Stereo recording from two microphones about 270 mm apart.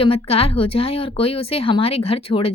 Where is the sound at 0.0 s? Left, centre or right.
Centre.